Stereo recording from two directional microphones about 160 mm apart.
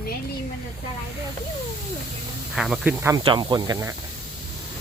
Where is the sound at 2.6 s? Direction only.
5° right (ahead or behind).